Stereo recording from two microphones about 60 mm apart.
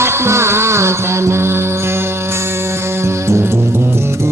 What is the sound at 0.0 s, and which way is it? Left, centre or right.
Music, right.